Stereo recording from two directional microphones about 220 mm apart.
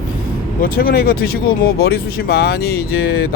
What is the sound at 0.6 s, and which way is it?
Speech, 45° left (ahead or behind).